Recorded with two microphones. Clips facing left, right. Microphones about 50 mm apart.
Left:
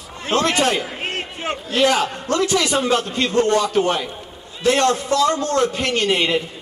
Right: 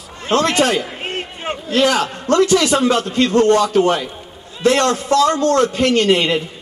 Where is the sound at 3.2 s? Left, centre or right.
Centre.